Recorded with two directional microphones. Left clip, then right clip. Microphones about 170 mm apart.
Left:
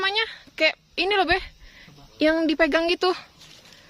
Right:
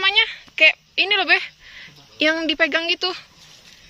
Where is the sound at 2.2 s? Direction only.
30° left (ahead or behind); by 3.2 s 50° left (ahead or behind).